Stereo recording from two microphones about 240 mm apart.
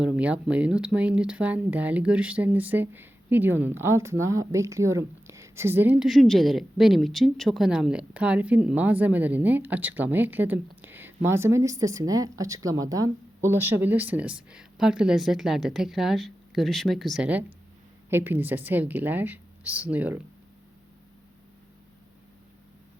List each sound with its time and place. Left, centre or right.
0.0 s speech: centre